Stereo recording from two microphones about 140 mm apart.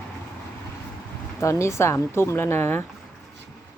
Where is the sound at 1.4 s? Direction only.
20° left (ahead or behind).